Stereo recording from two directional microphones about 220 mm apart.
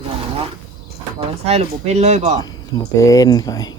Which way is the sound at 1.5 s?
30° right (ahead or behind).